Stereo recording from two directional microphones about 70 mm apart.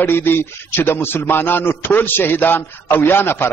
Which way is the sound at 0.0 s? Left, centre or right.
Left.